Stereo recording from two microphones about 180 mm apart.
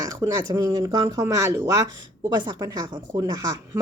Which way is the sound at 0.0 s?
15° right (ahead or behind).